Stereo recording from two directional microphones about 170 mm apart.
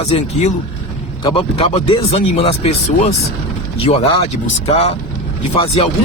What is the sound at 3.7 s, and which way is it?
Speech, 30° left (ahead or behind).